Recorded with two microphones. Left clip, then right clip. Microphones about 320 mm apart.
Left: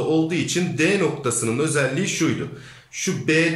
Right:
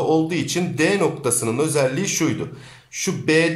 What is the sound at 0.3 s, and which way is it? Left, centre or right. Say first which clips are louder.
A man's voice: even; centre.